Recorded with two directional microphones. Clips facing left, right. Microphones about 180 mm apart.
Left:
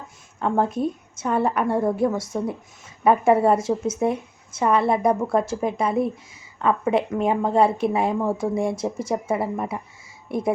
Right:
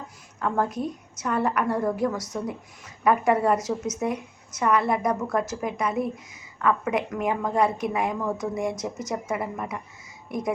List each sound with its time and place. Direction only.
0.3 s speech: 25° left (ahead or behind)